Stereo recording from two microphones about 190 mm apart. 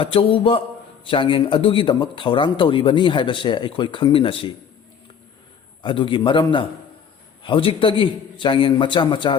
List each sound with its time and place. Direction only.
0.0 s speech: 30° left (ahead or behind)
5.8 s speech: 25° left (ahead or behind)